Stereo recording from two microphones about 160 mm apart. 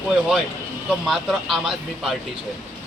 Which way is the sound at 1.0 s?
Centre (ahead or behind).